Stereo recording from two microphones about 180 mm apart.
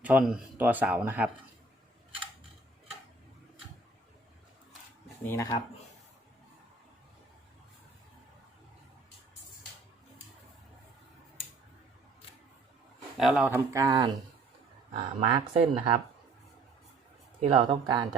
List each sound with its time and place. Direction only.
0.0 s speech: 10° right (ahead or behind)
5.2 s speech: 15° left (ahead or behind)
13.1 s speech: 5° right (ahead or behind)
13.7 s speech: 20° right (ahead or behind)
15.2 s speech: 30° right (ahead or behind)
17.4 s speech: 30° right (ahead or behind)